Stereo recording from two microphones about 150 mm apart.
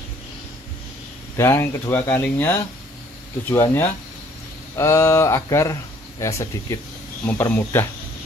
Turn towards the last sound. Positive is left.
turn(degrees=15)  # may be behind; listen again after turning